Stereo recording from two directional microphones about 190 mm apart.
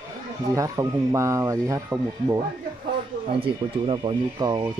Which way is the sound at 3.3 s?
30° right (ahead or behind).